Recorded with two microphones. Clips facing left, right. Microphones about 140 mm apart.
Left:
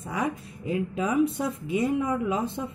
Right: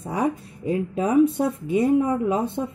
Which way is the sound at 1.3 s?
55° right (ahead or behind).